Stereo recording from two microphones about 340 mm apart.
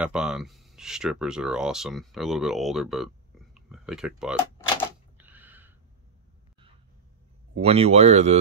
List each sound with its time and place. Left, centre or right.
0.0 s speech: centre
5.1 s sneeze: centre
7.6 s speech: centre